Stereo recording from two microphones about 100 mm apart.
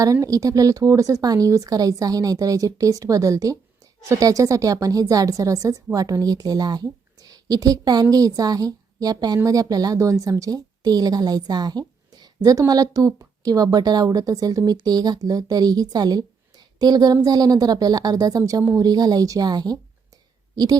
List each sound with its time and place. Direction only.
0.0 s a woman's voice: 35° right (ahead or behind)